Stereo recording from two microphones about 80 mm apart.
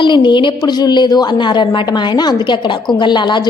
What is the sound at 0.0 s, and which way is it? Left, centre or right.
A woman's voice, left.